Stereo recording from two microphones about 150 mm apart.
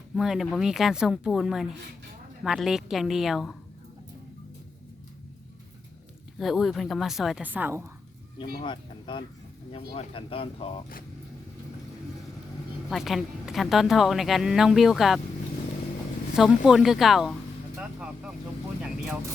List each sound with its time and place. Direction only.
0.2 s a woman's voice: 5° right (ahead or behind)
6.4 s a woman's voice: centre (ahead or behind)
8.6 s speech: 30° left (ahead or behind)
12.9 s a woman's voice: centre (ahead or behind)
16.3 s a woman's voice: centre (ahead or behind)